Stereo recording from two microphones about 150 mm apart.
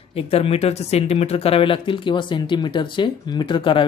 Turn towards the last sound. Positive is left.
turn(degrees=35)  # may be behind; listen again after turning